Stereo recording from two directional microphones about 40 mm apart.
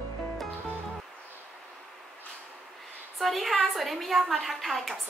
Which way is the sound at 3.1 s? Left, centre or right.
Centre.